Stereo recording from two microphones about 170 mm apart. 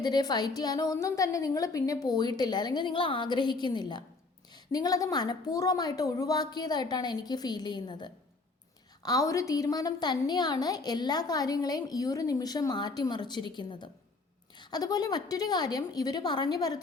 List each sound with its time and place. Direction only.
0.0 s a woman's voice: 25° left (ahead or behind)